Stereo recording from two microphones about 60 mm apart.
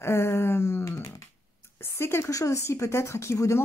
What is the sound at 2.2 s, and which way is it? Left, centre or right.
Speech, left.